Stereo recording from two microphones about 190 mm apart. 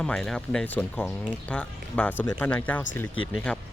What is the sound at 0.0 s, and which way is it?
Speech, 5° left (ahead or behind).